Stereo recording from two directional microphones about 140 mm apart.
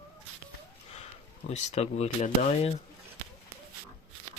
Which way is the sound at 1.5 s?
50° left (ahead or behind).